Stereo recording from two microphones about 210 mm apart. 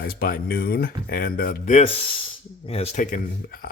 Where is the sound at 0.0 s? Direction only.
45° left (ahead or behind).